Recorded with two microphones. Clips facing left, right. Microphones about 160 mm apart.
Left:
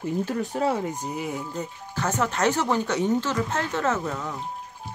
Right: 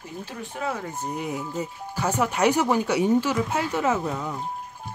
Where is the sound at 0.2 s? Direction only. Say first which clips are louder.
Left 7 dB; 50° left (ahead or behind).